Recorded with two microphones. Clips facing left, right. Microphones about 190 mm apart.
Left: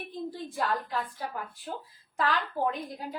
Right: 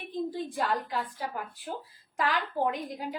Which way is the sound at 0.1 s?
15° right (ahead or behind).